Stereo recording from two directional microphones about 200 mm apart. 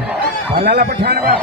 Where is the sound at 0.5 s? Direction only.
50° right (ahead or behind).